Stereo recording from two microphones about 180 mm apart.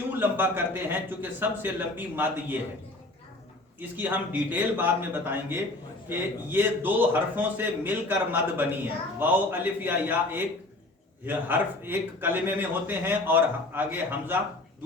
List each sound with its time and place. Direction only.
0.2 s a man's voice: 10° right (ahead or behind)
3.8 s a man's voice: 10° right (ahead or behind)